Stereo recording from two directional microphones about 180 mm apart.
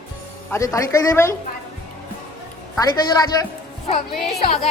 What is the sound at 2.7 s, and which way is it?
Speech, 20° left (ahead or behind).